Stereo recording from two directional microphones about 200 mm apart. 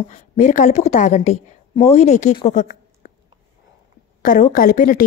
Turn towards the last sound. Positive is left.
turn(degrees=40)  # may be behind; listen again after turning